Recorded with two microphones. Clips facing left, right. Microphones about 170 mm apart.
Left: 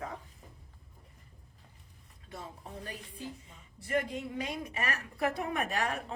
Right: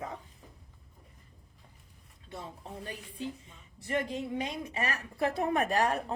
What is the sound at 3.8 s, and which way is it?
Speech, 25° right (ahead or behind).